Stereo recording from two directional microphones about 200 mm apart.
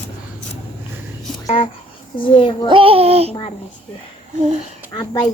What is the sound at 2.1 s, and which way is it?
Speech, 25° left (ahead or behind).